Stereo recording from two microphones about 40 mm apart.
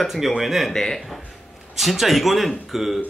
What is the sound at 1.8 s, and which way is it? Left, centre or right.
Speech, centre.